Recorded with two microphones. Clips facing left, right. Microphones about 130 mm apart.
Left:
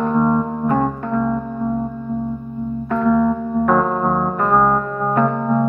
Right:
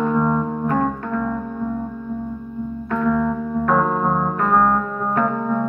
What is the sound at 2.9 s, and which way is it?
Music, 25° left (ahead or behind).